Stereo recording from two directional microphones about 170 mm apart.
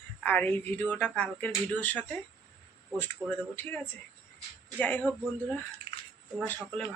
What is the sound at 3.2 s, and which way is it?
Speech, 25° right (ahead or behind).